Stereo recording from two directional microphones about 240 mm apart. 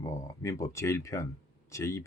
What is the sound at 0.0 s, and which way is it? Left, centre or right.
Speech, centre.